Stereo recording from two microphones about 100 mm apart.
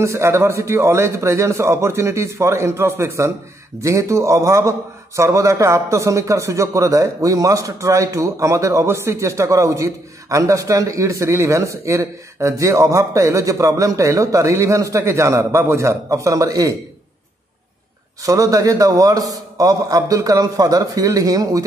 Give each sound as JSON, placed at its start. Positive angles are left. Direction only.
{"t": 0.0, "sound": "a man's voice", "side_deg": -30}
{"t": 18.2, "sound": "a man's voice", "side_deg": -35}